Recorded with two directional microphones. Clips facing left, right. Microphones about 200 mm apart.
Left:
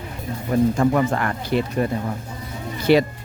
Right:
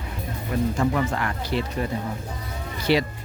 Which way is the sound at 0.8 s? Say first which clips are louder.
Left 5 dB; 50° left (ahead or behind).